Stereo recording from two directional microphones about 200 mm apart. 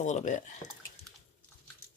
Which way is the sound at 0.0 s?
35° left (ahead or behind).